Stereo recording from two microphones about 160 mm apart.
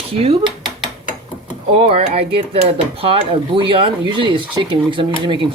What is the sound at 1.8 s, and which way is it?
Speech, 40° right (ahead or behind).